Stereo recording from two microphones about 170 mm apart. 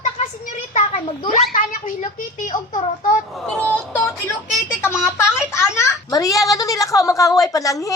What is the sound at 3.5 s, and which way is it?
Speech, 10° left (ahead or behind).